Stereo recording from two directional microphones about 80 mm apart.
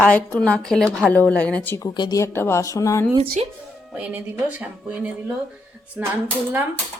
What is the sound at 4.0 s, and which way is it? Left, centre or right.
Speech, centre.